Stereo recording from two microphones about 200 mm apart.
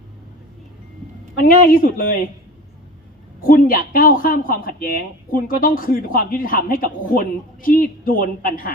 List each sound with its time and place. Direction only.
1.4 s speech: 45° left (ahead or behind)
3.4 s speech: 45° left (ahead or behind)